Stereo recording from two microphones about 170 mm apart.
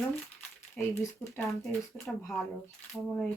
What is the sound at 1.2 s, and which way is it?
Speech, 5° left (ahead or behind).